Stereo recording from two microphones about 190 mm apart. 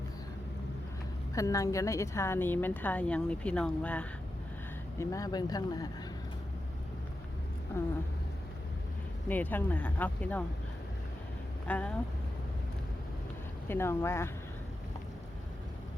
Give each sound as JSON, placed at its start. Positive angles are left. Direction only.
{"t": 1.4, "sound": "a woman's voice", "side_deg": 15}
{"t": 4.9, "sound": "speech", "side_deg": 15}
{"t": 9.3, "sound": "a woman's voice", "side_deg": 10}
{"t": 11.7, "sound": "a woman's voice", "side_deg": 10}
{"t": 13.7, "sound": "a woman's voice", "side_deg": 15}